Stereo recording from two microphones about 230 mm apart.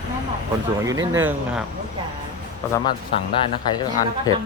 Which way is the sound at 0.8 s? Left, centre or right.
Centre.